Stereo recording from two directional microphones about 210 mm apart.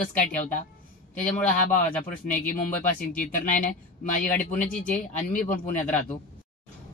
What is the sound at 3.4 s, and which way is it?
Speech, 40° left (ahead or behind).